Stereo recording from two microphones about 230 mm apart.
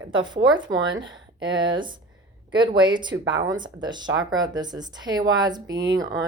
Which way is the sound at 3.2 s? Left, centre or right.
Right.